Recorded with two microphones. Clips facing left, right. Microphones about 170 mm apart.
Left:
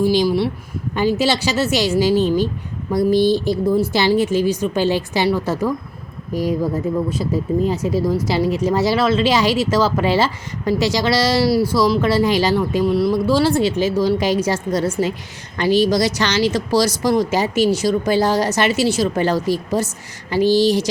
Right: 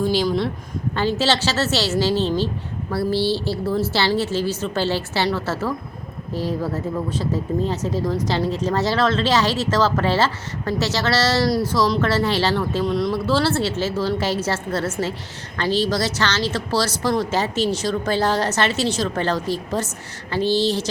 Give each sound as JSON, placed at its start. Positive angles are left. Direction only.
{"t": 0.0, "sound": "speech", "side_deg": 10}